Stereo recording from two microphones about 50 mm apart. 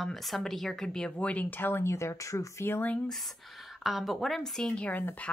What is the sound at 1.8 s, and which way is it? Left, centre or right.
Speech, left.